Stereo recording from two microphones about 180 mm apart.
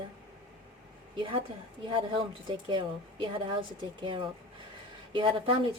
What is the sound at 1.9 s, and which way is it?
A woman's voice, 30° right (ahead or behind).